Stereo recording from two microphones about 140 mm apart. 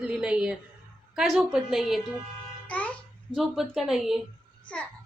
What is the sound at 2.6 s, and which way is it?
Babbling, 10° left (ahead or behind).